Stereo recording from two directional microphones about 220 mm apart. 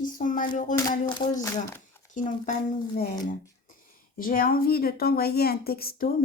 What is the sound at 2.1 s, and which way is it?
Speech, 35° left (ahead or behind).